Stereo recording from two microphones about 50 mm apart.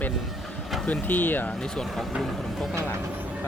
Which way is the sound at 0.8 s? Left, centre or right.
Left.